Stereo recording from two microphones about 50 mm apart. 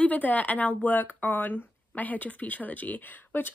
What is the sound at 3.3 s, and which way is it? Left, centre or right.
Speech, left.